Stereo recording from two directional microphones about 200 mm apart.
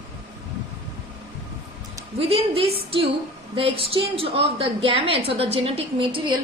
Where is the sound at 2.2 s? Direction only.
30° right (ahead or behind).